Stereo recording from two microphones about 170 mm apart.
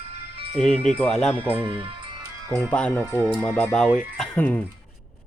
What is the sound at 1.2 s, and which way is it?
Speech, 5° left (ahead or behind).